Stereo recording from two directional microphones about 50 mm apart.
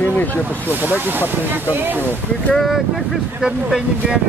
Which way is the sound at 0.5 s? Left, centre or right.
Right.